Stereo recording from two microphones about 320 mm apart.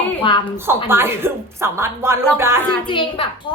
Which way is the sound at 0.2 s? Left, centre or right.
Centre.